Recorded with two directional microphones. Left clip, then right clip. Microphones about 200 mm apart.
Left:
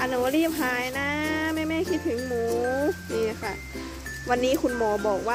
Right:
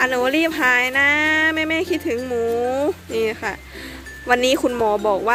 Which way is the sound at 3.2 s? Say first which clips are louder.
Right 9 dB; 15° right (ahead or behind).